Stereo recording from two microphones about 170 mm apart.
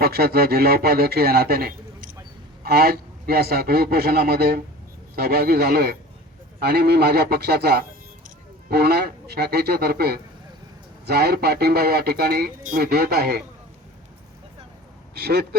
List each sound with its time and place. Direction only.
0.0 s speech: 65° right (ahead or behind)
15.1 s speech: 70° right (ahead or behind)